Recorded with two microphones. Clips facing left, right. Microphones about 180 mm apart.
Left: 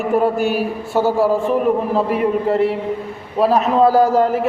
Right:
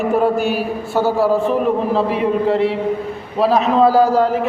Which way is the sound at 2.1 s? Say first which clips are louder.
Right 1 dB; 45° left (ahead or behind).